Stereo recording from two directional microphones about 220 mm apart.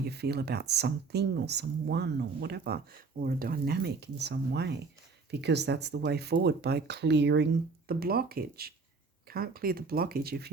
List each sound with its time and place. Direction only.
0.0 s speech: 45° right (ahead or behind)